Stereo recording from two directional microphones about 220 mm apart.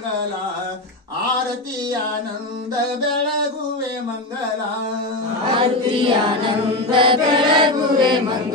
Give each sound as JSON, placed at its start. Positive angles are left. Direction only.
{"t": 5.5, "sound": "chant", "side_deg": -25}